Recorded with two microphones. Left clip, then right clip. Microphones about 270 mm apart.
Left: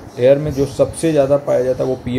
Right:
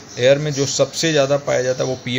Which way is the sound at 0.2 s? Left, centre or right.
Centre.